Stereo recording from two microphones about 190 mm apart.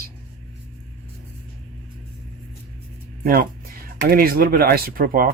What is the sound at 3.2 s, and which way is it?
Speech, 50° right (ahead or behind).